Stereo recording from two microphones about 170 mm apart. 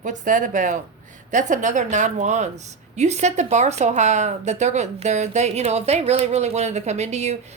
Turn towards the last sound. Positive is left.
turn(degrees=-40)  # may be behind; listen again after turning